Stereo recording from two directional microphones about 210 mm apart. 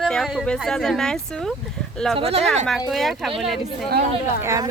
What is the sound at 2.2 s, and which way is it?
Speech, 30° right (ahead or behind).